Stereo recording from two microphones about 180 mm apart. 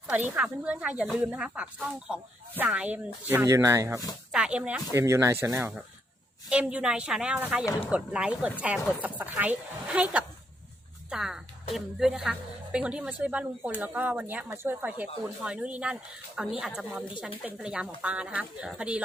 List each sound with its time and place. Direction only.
0.1 s a woman's voice: 5° right (ahead or behind)
4.3 s a woman's voice: 5° right (ahead or behind)